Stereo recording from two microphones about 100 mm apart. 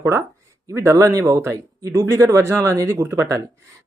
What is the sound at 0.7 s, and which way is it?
Speech, 30° right (ahead or behind).